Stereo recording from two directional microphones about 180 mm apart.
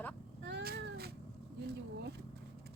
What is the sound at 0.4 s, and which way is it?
Cat, 70° right (ahead or behind).